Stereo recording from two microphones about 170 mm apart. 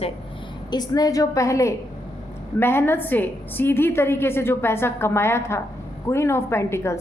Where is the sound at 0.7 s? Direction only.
25° left (ahead or behind).